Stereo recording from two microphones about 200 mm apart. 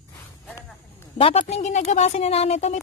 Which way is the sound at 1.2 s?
30° left (ahead or behind).